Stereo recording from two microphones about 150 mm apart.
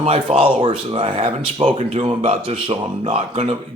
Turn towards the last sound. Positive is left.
turn(degrees=-40)  # may be behind; listen again after turning